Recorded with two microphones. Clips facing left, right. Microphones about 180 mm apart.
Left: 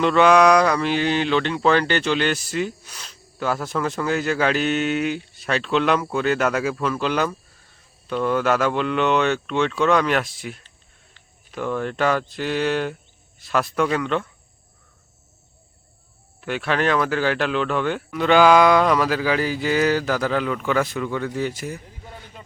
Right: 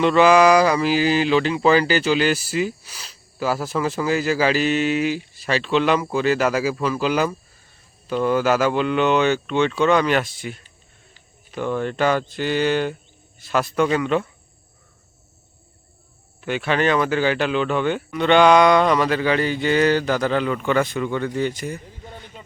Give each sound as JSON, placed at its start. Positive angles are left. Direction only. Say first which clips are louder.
{"t": 0.0, "sound": "speech", "louder": "right 1 dB", "side_deg": 0}
{"t": 16.4, "sound": "speech", "louder": "right 2 dB", "side_deg": 0}